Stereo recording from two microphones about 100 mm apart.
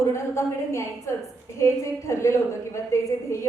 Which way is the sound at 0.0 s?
30° left (ahead or behind).